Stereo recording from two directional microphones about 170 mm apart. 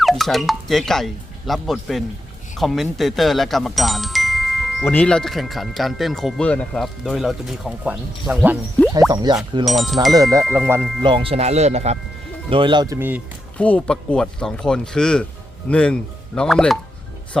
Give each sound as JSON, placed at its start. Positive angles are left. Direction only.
{"t": 0.0, "sound": "speech", "side_deg": 0}
{"t": 2.6, "sound": "glockenspiel", "side_deg": 0}
{"t": 4.9, "sound": "speech", "side_deg": 10}
{"t": 8.9, "sound": "speech", "side_deg": -20}
{"t": 9.6, "sound": "speech", "side_deg": 0}
{"t": 10.5, "sound": "speech", "side_deg": -10}
{"t": 11.0, "sound": "speech", "side_deg": -30}
{"t": 13.6, "sound": "speech", "side_deg": 10}